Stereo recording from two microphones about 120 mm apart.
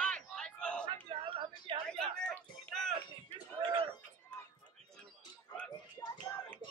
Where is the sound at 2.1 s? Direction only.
10° left (ahead or behind).